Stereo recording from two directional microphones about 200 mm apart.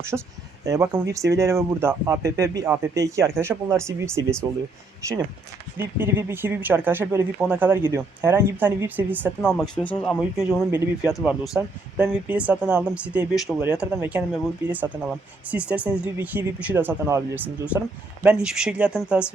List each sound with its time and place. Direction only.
0.1 s speech: 5° right (ahead or behind)
0.6 s speech: 20° right (ahead or behind)
5.7 s speech: 10° right (ahead or behind)
10.7 s speech: 15° right (ahead or behind)
11.1 s speech: centre (ahead or behind)